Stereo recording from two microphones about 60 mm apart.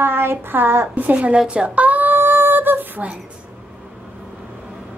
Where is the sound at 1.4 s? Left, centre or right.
Right.